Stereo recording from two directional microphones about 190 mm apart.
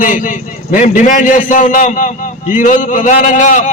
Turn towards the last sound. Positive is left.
turn(degrees=40)  # may be behind; listen again after turning